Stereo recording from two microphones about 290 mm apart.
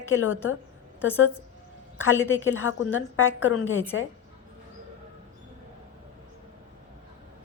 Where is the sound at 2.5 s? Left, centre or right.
Left.